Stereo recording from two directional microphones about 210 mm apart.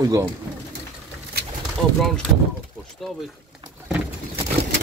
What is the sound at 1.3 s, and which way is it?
Bird, 50° right (ahead or behind).